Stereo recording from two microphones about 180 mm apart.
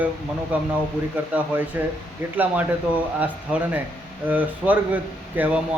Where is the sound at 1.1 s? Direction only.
10° right (ahead or behind).